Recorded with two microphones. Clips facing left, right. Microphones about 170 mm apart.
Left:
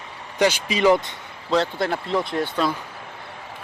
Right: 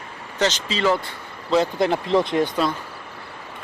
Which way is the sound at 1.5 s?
15° right (ahead or behind).